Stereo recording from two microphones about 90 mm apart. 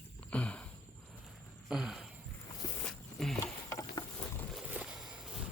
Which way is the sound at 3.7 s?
40° left (ahead or behind).